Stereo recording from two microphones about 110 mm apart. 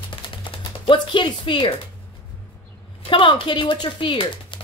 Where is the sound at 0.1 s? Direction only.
50° left (ahead or behind).